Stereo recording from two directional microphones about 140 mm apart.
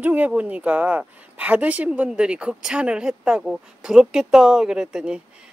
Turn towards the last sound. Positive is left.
turn(degrees=-5)  # may be behind; listen again after turning